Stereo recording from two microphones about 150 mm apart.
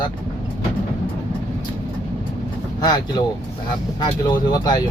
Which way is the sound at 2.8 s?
30° left (ahead or behind).